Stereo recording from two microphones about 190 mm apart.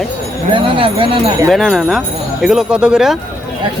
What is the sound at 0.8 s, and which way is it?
Speech, 30° right (ahead or behind).